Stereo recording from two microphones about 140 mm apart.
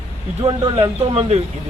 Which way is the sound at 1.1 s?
45° right (ahead or behind).